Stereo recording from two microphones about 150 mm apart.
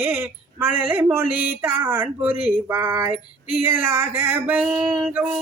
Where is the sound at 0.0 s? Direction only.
15° right (ahead or behind).